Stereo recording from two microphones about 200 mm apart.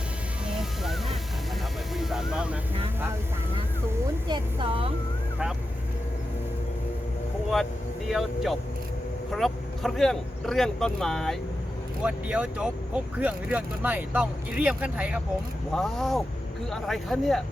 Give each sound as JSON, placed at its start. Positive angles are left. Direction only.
{"t": 0.6, "sound": "music", "side_deg": 0}
{"t": 4.3, "sound": "a woman's voice", "side_deg": -25}
{"t": 7.5, "sound": "vehicle", "side_deg": 0}
{"t": 9.3, "sound": "speech", "side_deg": 0}